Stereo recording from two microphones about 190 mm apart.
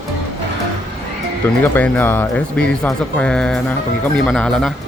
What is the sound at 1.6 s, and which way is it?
Speech, 10° left (ahead or behind).